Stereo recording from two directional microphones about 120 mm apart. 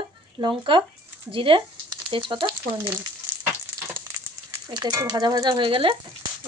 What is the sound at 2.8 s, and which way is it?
Speech, 25° right (ahead or behind).